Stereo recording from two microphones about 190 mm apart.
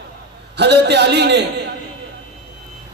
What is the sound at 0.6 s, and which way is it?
Speech, 65° right (ahead or behind).